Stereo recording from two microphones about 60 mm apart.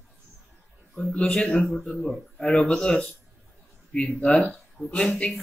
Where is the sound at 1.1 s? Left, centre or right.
Centre.